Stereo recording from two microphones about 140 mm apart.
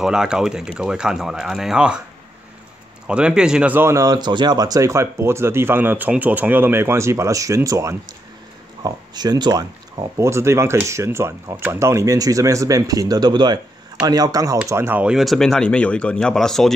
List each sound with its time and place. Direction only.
0.0 s speech: 5° right (ahead or behind)
3.1 s speech: 5° right (ahead or behind)